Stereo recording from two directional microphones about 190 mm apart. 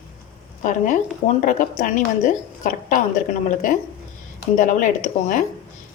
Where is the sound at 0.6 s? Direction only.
40° left (ahead or behind).